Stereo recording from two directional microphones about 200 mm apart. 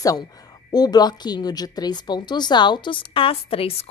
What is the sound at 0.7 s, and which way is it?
Speech, 20° left (ahead or behind).